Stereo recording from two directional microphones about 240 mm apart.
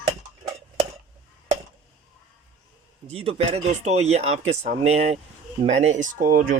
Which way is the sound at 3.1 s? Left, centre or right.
Right.